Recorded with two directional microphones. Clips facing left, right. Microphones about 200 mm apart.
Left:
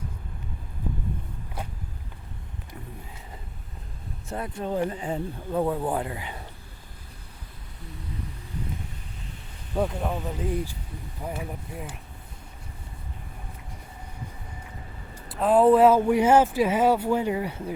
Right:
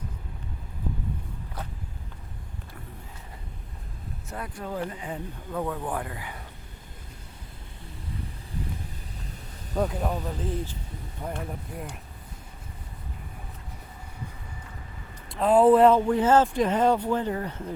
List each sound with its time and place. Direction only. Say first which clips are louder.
4.3 s speech: left 5 dB; 25° left (ahead or behind)
9.7 s speech: even; centre (ahead or behind)
15.3 s speech: even; centre (ahead or behind)